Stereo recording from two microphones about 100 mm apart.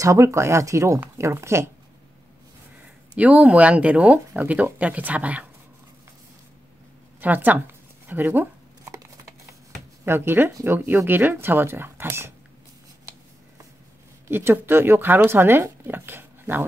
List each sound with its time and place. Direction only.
0.0 s speech: 30° right (ahead or behind)
3.2 s speech: 15° right (ahead or behind)
7.2 s shuffling cards: 20° right (ahead or behind)
10.0 s speech: 25° right (ahead or behind)
14.2 s speech: 25° right (ahead or behind)